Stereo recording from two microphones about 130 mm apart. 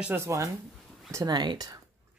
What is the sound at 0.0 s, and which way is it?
Speech, 20° right (ahead or behind).